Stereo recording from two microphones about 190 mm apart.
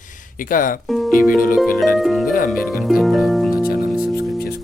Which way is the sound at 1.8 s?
Centre (ahead or behind).